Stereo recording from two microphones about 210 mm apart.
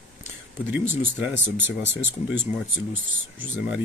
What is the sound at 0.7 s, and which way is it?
Speech, 10° right (ahead or behind).